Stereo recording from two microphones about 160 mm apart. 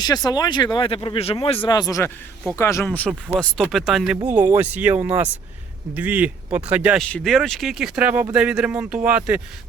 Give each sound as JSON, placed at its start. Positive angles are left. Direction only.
{"t": 0.3, "sound": "speech", "side_deg": 25}
{"t": 3.3, "sound": "speech", "side_deg": 0}